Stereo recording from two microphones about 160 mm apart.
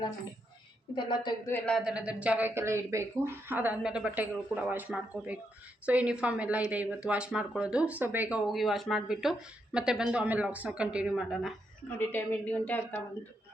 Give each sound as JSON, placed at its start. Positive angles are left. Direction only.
{"t": 0.9, "sound": "a woman's voice", "side_deg": 30}
{"t": 1.5, "sound": "a woman's voice", "side_deg": 10}
{"t": 1.8, "sound": "speech", "side_deg": -5}
{"t": 11.9, "sound": "a woman's voice", "side_deg": 10}